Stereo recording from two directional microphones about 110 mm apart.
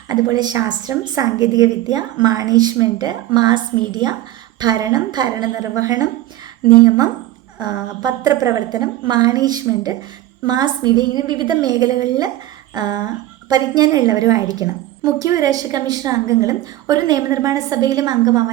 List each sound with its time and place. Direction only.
0.3 s a woman's voice: 35° right (ahead or behind)